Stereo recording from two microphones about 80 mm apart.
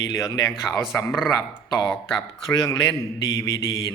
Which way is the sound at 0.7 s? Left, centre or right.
Centre.